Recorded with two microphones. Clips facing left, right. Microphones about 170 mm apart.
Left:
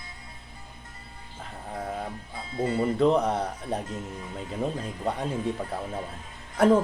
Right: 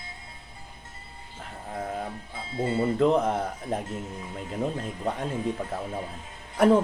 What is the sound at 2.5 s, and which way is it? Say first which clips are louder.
Speech: even; 25° right (ahead or behind).